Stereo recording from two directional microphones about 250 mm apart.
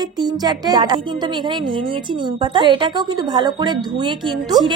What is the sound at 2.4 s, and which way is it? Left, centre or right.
A woman's voice, centre.